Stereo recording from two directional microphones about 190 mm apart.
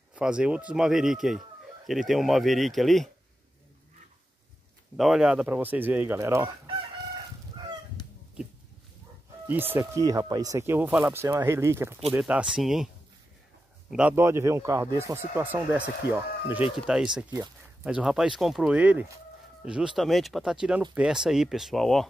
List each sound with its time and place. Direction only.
0.1 s speech: 5° right (ahead or behind)
4.9 s a man's voice: centre (ahead or behind)
8.0 s fowl: 20° left (ahead or behind)
9.5 s a man's voice: 10° right (ahead or behind)